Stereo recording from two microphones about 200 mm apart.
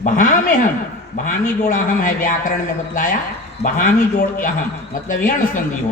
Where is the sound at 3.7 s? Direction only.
45° left (ahead or behind).